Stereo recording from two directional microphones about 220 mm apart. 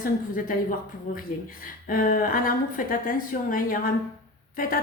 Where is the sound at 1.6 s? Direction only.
40° left (ahead or behind).